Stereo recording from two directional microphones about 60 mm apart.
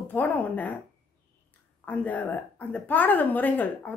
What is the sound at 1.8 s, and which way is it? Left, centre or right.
A woman's voice, left.